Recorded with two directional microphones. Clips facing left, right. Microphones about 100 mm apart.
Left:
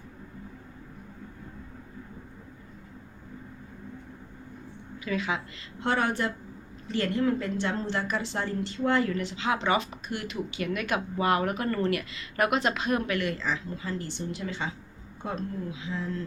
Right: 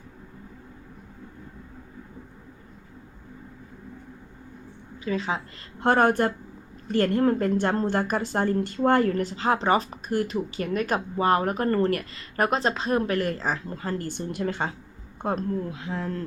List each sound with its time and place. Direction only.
5.0 s speech: 35° right (ahead or behind)
5.8 s a woman's voice: 50° right (ahead or behind)